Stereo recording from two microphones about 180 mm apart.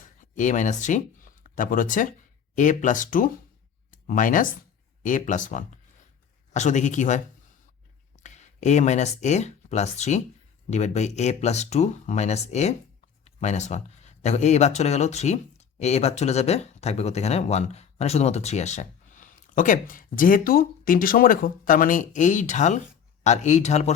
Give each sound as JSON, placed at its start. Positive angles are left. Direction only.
{"t": 0.0, "sound": "speech", "side_deg": 45}